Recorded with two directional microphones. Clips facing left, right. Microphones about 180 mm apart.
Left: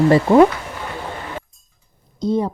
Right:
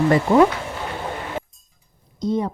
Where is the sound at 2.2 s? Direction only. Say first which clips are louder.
Left 3 dB; 30° left (ahead or behind).